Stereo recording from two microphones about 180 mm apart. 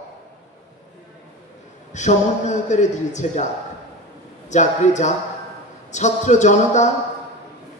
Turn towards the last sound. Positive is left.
turn(degrees=40)  # may be behind; listen again after turning